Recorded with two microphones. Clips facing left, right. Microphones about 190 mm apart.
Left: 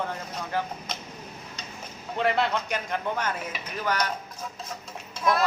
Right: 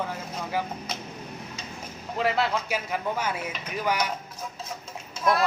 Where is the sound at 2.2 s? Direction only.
Centre (ahead or behind).